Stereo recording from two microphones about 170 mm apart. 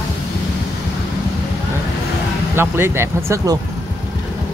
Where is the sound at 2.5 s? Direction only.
15° right (ahead or behind).